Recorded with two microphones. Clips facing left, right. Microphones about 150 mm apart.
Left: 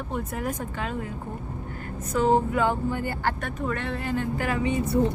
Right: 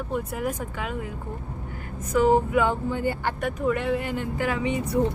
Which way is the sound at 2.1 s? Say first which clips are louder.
Right 2 dB; 10° right (ahead or behind).